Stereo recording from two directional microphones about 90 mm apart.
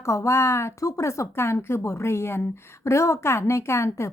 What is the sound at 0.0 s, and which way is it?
A woman's voice, 35° left (ahead or behind).